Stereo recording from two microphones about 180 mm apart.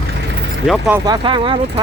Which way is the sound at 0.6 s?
Centre (ahead or behind).